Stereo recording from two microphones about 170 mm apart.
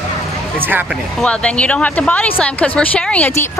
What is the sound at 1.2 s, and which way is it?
Speech, 5° left (ahead or behind).